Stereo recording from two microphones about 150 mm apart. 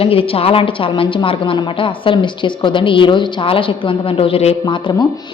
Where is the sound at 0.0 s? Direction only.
40° left (ahead or behind).